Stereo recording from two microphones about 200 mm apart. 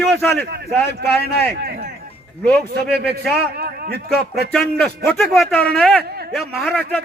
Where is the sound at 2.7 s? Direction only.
55° right (ahead or behind).